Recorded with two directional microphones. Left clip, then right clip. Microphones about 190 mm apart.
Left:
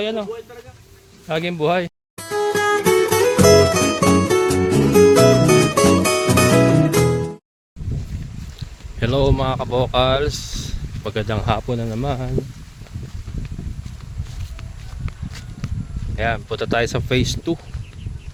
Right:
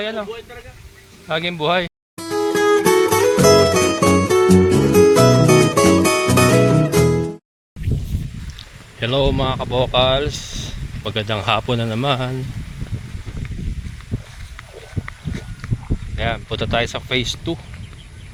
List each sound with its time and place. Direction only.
0.0 s a man's voice: 50° left (ahead or behind)
1.3 s speech: 45° left (ahead or behind)
2.1 s music: centre (ahead or behind)
9.0 s speech: 30° left (ahead or behind)
11.7 s a man's voice: 5° left (ahead or behind)
16.1 s speech: 35° left (ahead or behind)